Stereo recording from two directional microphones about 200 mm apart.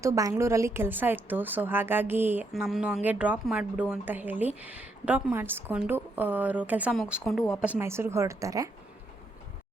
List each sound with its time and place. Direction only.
0.0 s a woman's voice: 15° right (ahead or behind)